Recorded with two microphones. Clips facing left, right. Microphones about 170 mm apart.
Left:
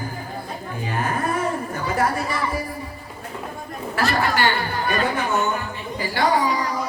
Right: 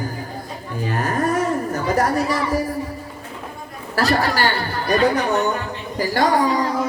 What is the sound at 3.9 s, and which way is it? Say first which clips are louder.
Speech: right 3 dB; 40° right (ahead or behind).